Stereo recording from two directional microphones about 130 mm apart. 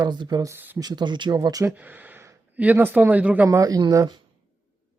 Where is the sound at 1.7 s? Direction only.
15° right (ahead or behind).